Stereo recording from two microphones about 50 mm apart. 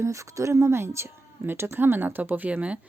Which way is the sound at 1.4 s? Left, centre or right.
Right.